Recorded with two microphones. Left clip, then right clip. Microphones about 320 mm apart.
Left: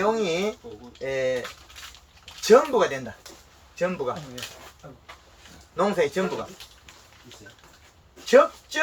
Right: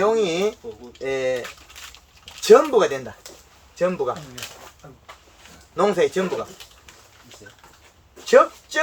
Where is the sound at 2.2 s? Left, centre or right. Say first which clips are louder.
Right 4 dB; right.